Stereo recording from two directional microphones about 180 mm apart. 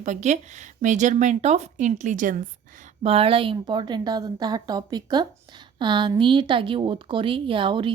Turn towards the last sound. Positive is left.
turn(degrees=-30)  # may be behind; listen again after turning